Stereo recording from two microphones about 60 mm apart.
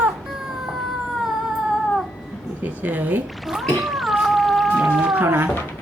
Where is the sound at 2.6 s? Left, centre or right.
Right.